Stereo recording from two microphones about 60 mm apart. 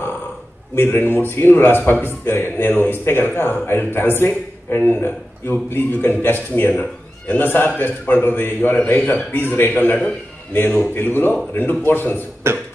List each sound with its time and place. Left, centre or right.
0.7 s a man's voice: left
12.4 s beatboxing: right